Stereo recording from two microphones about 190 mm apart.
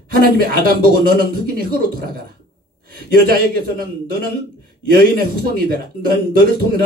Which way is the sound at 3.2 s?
50° right (ahead or behind).